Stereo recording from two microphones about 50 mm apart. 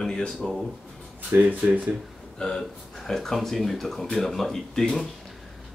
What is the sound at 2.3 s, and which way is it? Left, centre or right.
Speech, centre.